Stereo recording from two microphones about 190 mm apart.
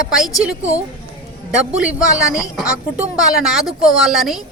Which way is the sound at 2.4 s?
5° right (ahead or behind).